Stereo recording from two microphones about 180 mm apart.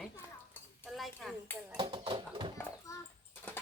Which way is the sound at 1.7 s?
30° right (ahead or behind).